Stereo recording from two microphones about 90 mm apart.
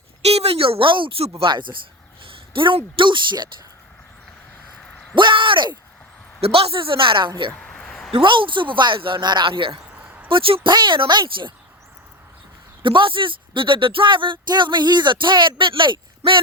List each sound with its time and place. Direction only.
0.4 s speech: 90° right; by 1.2 s 70° right (ahead or behind)
1.4 s speech: 60° right (ahead or behind)
2.2 s speech: 70° right (ahead or behind)
5.1 s speech: 65° right (ahead or behind)
6.4 s a woman's voice: 90° right; by 7.5 s 65° right (ahead or behind)
7.5 s a sound: 10° left (ahead or behind)
8.1 s speech: 65° right (ahead or behind)
12.8 s speech: 65° right (ahead or behind)